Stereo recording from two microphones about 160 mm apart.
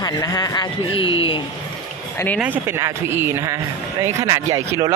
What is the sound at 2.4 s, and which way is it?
Speech, 15° right (ahead or behind).